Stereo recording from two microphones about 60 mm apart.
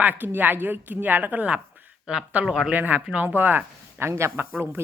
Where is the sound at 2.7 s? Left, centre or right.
Right.